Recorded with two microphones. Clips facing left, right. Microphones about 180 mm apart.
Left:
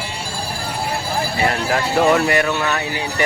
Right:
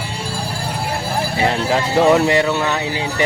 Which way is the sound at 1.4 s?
20° right (ahead or behind).